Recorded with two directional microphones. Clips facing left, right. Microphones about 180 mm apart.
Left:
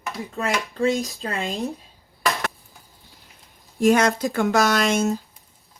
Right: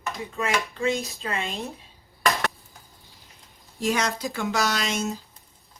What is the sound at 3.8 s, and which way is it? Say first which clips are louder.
Speech: left 8 dB; 50° left (ahead or behind).